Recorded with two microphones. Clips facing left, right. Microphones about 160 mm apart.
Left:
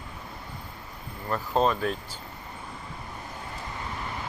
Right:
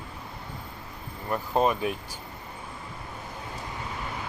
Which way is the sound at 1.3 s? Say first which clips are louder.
Even; 15° right (ahead or behind).